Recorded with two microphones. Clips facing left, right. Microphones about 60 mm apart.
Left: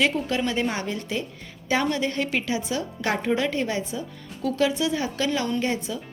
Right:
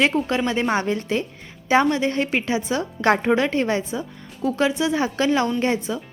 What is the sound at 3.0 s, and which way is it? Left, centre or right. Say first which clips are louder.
Speech: right 6 dB; right.